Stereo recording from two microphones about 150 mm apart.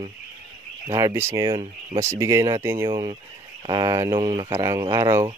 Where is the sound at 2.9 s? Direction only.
30° right (ahead or behind).